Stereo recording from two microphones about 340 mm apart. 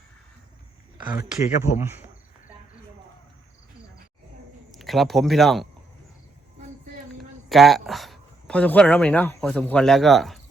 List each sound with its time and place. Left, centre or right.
1.2 s speech: left
1.8 s speech: centre
4.8 s speech: centre
7.5 s speech: centre